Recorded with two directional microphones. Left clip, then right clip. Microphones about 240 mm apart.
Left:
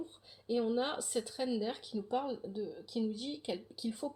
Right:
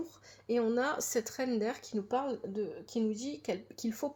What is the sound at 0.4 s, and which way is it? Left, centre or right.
A woman's voice, right.